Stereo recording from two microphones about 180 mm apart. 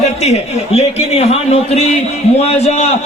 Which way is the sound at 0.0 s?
35° left (ahead or behind).